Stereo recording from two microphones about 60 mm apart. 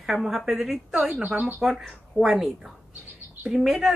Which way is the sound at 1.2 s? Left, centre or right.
Right.